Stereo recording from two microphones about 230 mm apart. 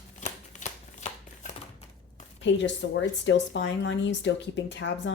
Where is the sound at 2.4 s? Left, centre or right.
Left.